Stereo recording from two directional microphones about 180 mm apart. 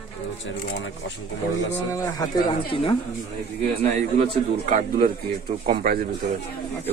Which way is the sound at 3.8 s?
40° right (ahead or behind).